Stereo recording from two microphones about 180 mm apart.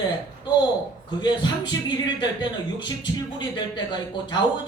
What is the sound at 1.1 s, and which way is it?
A man's voice, 25° left (ahead or behind).